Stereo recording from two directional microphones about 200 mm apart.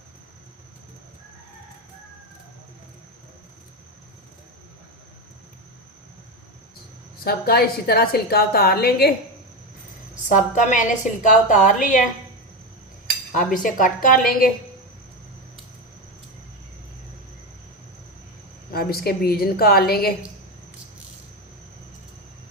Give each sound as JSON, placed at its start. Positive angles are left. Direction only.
{"t": 7.3, "sound": "a woman's voice", "side_deg": 50}
{"t": 10.2, "sound": "a woman's voice", "side_deg": 40}
{"t": 13.3, "sound": "a woman's voice", "side_deg": 40}
{"t": 18.7, "sound": "a woman's voice", "side_deg": 50}